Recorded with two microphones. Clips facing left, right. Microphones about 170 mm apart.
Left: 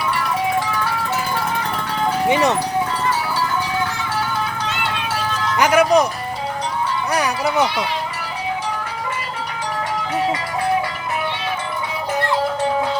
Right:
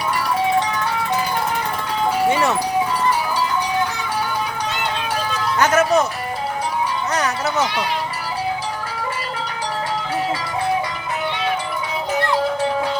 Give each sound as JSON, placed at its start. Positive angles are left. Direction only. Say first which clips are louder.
{"t": 2.3, "sound": "speech", "louder": "left 2 dB", "side_deg": 20}
{"t": 5.5, "sound": "speech", "louder": "left 2 dB", "side_deg": 10}
{"t": 7.1, "sound": "music", "louder": "left 4 dB", "side_deg": 15}